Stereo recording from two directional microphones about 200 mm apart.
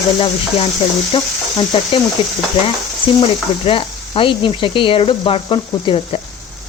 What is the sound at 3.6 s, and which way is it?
Speech, 25° left (ahead or behind).